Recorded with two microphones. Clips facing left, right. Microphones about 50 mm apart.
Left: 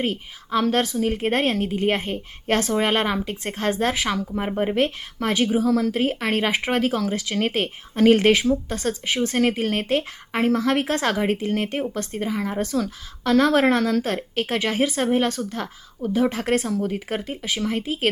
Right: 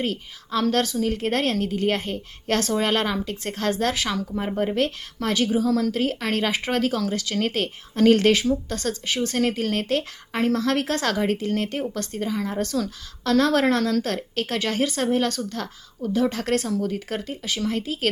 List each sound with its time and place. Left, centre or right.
0.0 s speech: left